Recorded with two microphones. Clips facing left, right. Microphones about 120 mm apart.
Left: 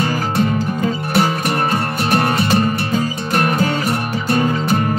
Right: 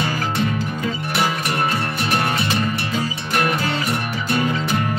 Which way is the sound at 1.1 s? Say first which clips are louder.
Left 4 dB; 45° left (ahead or behind).